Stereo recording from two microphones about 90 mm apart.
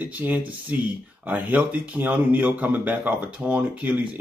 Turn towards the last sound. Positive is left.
turn(degrees=-15)  # may be behind; listen again after turning